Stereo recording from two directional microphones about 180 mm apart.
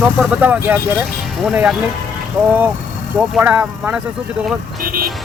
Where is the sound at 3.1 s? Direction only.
10° right (ahead or behind).